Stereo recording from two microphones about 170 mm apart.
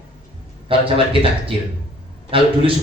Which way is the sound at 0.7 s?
30° right (ahead or behind).